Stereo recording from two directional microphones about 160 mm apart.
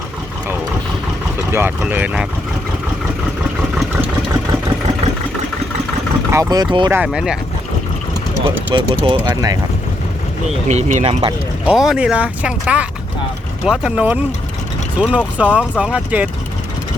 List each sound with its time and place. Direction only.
1.5 s speech: 15° right (ahead or behind)
6.3 s speech: 20° right (ahead or behind)
6.9 s speech: 5° right (ahead or behind)
8.7 s speech: 30° right (ahead or behind)
9.2 s speech: 20° right (ahead or behind)
10.7 s speech: 50° right (ahead or behind)
11.6 s speech: 5° right (ahead or behind)